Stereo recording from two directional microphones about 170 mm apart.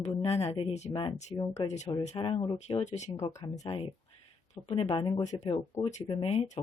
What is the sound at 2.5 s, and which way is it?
Speech, 40° left (ahead or behind).